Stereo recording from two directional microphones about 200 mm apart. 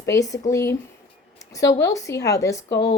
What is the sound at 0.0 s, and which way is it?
A woman's voice, 15° left (ahead or behind).